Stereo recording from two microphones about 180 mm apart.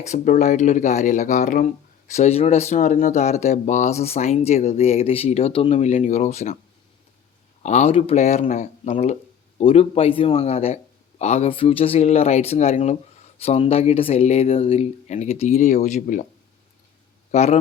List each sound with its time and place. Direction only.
0.0 s speech: 45° left (ahead or behind)
7.6 s speech: 40° left (ahead or behind)
17.3 s speech: 40° left (ahead or behind)